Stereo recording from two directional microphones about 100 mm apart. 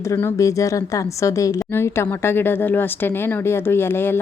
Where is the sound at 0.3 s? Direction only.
35° left (ahead or behind).